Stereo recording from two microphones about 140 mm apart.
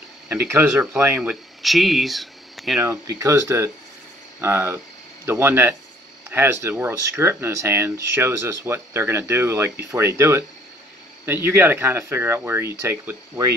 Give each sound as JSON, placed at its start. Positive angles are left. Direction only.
{"t": 0.3, "sound": "speech", "side_deg": -15}
{"t": 1.6, "sound": "speech", "side_deg": 0}
{"t": 2.8, "sound": "speech", "side_deg": -20}